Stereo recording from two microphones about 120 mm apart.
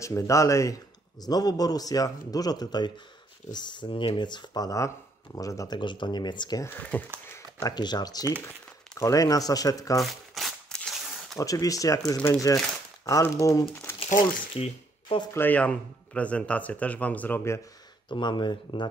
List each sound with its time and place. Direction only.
0.0 s speech: 25° left (ahead or behind)
5.8 s speech: 40° left (ahead or behind)
6.6 s speech: 15° left (ahead or behind)
7.6 s speech: 35° left (ahead or behind)
9.9 s a sound: centre (ahead or behind)
11.3 s speech: 30° left (ahead or behind)
13.9 s speech: 60° left (ahead or behind)
15.3 s speech: 15° left (ahead or behind)
18.0 s speech: 40° left (ahead or behind)